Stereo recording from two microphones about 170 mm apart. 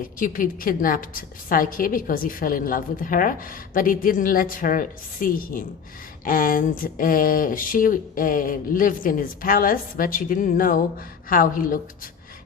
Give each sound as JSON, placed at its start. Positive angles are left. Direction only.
{"t": 0.0, "sound": "speech", "side_deg": 55}